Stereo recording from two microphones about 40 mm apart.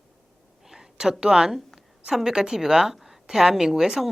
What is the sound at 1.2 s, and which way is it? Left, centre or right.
A woman's voice, centre.